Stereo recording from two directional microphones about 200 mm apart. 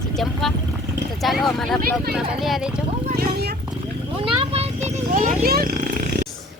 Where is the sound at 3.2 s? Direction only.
50° right (ahead or behind).